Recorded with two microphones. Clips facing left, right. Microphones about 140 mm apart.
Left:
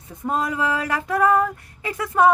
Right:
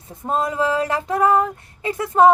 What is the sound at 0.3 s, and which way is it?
Female singing, 25° right (ahead or behind).